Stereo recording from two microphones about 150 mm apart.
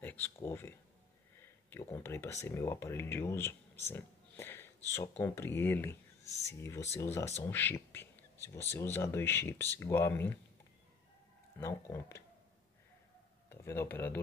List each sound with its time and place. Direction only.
0.0 s speech: 15° left (ahead or behind)
3.9 s a sound: 15° left (ahead or behind)
4.9 s speech: 15° left (ahead or behind)
11.6 s speech: 15° left (ahead or behind)
13.5 s speech: 15° left (ahead or behind)